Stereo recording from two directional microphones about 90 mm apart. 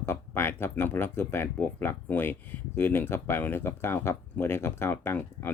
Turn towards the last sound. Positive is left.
turn(degrees=20)  # may be behind; listen again after turning